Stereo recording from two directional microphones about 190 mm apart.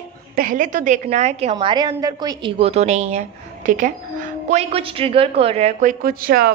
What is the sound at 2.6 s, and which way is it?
A woman's voice, 35° right (ahead or behind).